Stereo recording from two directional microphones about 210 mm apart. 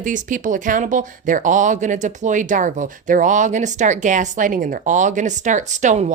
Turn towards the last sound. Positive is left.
turn(degrees=-35)  # may be behind; listen again after turning